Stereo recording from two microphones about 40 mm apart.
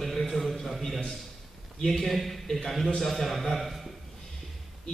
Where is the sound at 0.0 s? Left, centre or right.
Centre.